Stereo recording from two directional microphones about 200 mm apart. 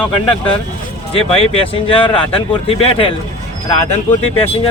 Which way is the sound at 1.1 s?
30° left (ahead or behind).